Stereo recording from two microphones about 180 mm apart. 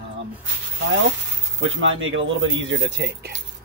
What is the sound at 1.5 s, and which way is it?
Speech, 90° right.